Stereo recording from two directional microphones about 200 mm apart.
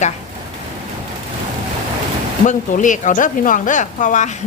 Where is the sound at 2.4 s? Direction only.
40° left (ahead or behind).